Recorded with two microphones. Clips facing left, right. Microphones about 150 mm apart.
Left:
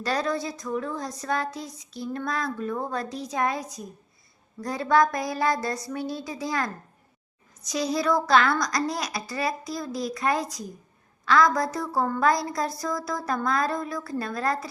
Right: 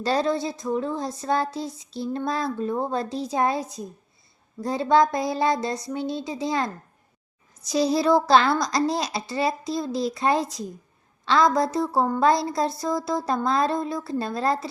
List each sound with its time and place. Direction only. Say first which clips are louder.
0.0 s speech: right 4 dB; 25° right (ahead or behind)